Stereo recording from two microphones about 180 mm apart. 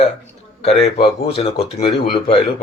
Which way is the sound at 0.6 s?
35° left (ahead or behind).